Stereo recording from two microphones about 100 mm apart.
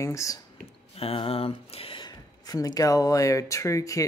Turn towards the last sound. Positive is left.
turn(degrees=35)  # may be behind; listen again after turning